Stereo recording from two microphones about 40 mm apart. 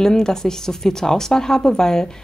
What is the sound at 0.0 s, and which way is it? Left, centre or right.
Speech, centre.